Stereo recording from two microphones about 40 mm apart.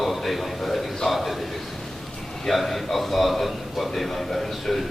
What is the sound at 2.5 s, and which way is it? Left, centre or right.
A man's voice, centre.